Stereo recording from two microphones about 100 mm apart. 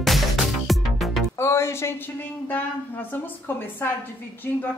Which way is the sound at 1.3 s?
25° left (ahead or behind).